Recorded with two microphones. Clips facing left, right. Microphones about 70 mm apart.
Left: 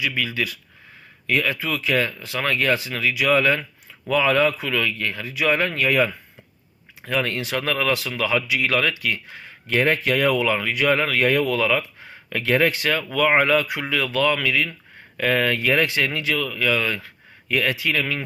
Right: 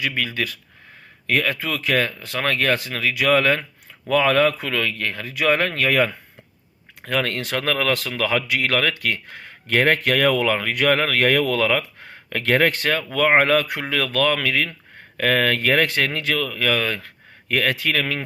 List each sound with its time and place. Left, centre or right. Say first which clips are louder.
0.0 s speech: even; right